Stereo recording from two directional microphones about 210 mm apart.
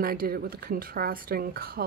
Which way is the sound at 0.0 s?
45° right (ahead or behind).